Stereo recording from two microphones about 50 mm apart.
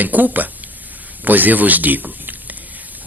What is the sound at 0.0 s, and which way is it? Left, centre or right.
Speech, right.